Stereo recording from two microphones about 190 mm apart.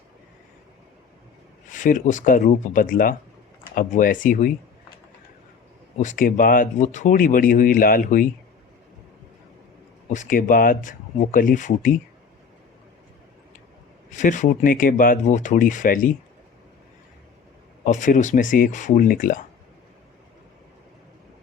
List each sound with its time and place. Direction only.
1.7 s speech: 45° left (ahead or behind)
6.0 s speech: 45° left (ahead or behind)
10.1 s speech: 40° left (ahead or behind)
14.1 s speech: 40° left (ahead or behind)
17.8 s speech: 40° left (ahead or behind)